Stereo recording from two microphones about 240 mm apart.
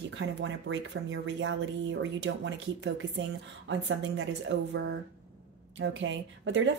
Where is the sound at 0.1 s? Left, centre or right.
Right.